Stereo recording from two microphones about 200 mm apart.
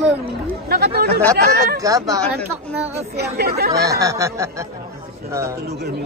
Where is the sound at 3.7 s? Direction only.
15° right (ahead or behind).